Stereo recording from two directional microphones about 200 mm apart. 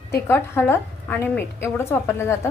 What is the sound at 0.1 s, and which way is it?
A woman's voice, 15° left (ahead or behind).